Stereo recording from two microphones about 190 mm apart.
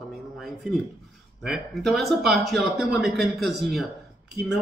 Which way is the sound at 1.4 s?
Centre (ahead or behind).